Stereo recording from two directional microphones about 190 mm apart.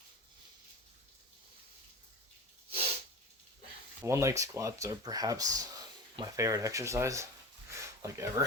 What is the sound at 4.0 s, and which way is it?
Speech, 15° right (ahead or behind).